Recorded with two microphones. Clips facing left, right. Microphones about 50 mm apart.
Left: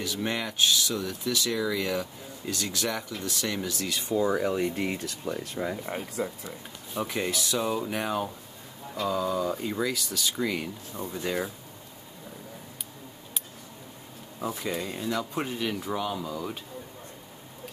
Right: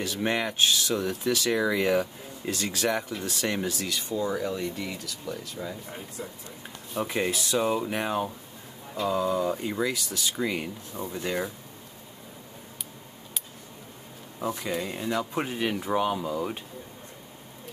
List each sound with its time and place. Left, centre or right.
0.0 s speech: right
4.1 s speech: centre
4.6 s speech: left
5.9 s speech: left
7.0 s speech: centre
11.1 s speech: centre
14.4 s speech: centre
15.0 s speech: centre